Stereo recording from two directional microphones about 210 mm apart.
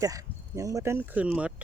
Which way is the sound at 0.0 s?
15° right (ahead or behind).